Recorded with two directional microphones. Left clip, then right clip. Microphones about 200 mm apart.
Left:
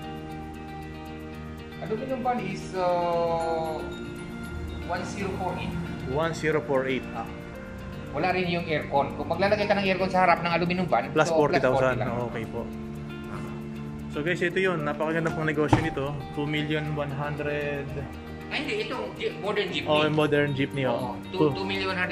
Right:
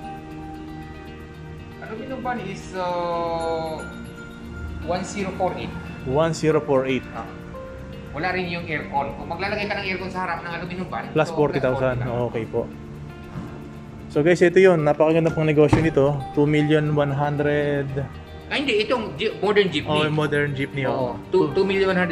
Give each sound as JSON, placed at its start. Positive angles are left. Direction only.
{"t": 2.2, "sound": "speech", "side_deg": 10}
{"t": 6.1, "sound": "speech", "side_deg": -15}
{"t": 8.2, "sound": "speech", "side_deg": 10}
{"t": 9.4, "sound": "speech", "side_deg": 30}
{"t": 11.1, "sound": "speech", "side_deg": 0}
{"t": 12.6, "sound": "speech", "side_deg": -20}
{"t": 14.1, "sound": "speech", "side_deg": -30}
{"t": 15.8, "sound": "speech", "side_deg": -25}
{"t": 18.5, "sound": "speech", "side_deg": -50}
{"t": 19.9, "sound": "speech", "side_deg": 0}
{"t": 21.3, "sound": "speech", "side_deg": -35}